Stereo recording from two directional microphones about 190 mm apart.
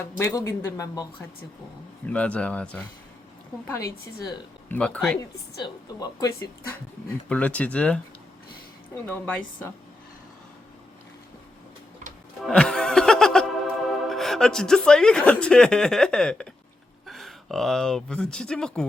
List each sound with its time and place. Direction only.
0.2 s speech: 15° left (ahead or behind)
2.0 s speech: 5° left (ahead or behind)
3.7 s speech: 15° left (ahead or behind)
4.8 s speech: centre (ahead or behind)
5.6 s speech: 20° left (ahead or behind)
7.3 s speech: 5° left (ahead or behind)
9.0 s speech: 10° left (ahead or behind)
12.5 s music: 5° left (ahead or behind)
14.1 s speech: centre (ahead or behind)